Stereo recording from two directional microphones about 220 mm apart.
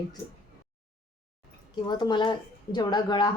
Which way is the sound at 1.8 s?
20° left (ahead or behind).